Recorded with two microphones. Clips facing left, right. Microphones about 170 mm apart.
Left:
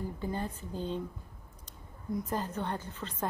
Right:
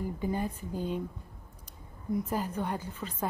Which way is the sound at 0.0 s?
15° right (ahead or behind).